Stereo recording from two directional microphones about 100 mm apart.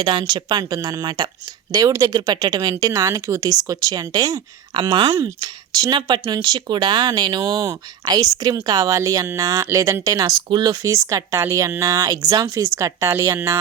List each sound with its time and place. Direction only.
0.0 s speech: 50° right (ahead or behind)
1.7 s speech: 35° right (ahead or behind)
4.7 s speech: 55° right (ahead or behind)
5.1 s speech: 35° right (ahead or behind)